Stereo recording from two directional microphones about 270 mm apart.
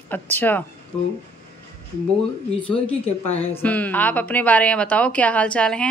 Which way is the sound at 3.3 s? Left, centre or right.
Centre.